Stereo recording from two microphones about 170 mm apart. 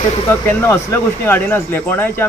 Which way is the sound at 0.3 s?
10° left (ahead or behind).